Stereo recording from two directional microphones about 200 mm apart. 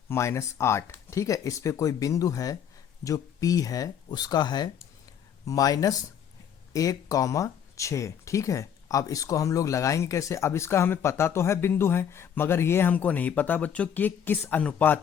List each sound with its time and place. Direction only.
0.1 s speech: 15° left (ahead or behind)